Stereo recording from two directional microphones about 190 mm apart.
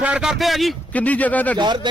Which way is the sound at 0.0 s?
5° right (ahead or behind).